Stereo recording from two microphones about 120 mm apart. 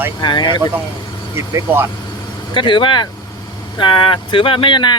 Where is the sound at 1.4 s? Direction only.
20° right (ahead or behind).